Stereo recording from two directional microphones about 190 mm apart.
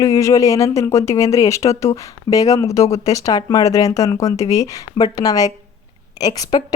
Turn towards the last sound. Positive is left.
turn(degrees=20)  # may be behind; listen again after turning